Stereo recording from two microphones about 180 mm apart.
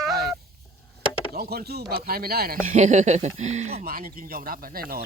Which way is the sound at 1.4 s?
60° right (ahead or behind).